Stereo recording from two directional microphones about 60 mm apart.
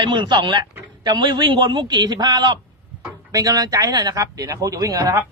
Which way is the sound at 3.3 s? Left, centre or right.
Right.